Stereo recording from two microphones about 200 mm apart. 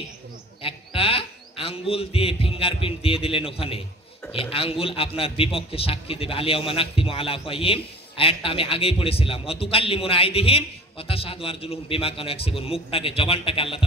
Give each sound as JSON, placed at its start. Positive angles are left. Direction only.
{"t": 0.6, "sound": "a man's voice", "side_deg": 25}